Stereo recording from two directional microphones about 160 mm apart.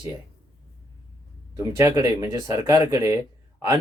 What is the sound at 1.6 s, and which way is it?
Speech, 20° right (ahead or behind).